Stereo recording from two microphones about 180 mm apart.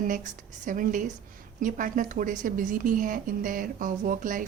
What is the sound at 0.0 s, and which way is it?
A woman's voice, 45° right (ahead or behind).